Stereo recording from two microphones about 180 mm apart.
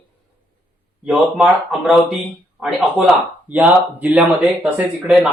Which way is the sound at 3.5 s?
10° right (ahead or behind).